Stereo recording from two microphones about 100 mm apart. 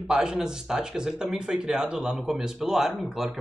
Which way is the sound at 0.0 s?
5° right (ahead or behind).